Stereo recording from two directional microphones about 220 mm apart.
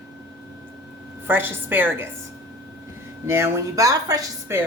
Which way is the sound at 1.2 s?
10° right (ahead or behind).